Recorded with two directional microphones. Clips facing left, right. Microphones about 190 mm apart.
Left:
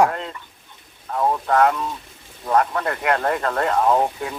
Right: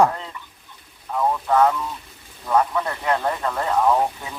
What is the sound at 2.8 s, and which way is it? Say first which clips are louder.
Speech: left 2 dB; 65° left (ahead or behind).